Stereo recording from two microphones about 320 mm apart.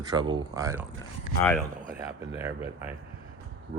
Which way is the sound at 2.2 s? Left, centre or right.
Centre.